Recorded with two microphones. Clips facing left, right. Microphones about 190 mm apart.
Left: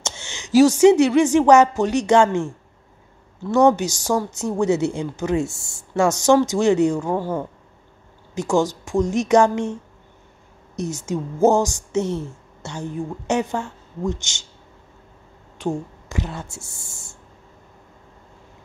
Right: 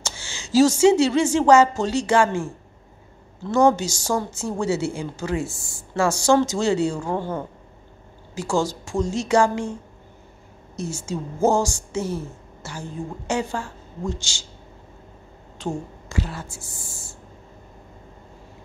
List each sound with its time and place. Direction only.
0.0 s a woman's voice: 20° left (ahead or behind)
7.2 s speech: 10° left (ahead or behind)
8.4 s speech: 20° left (ahead or behind)
10.8 s a woman's voice: 20° left (ahead or behind)
15.6 s a woman's voice: 15° left (ahead or behind)